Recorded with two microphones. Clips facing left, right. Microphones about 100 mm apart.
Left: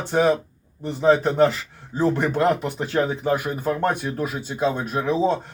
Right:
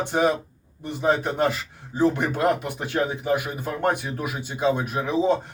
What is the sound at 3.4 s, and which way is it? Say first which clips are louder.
Speech: left 5 dB; 40° left (ahead or behind).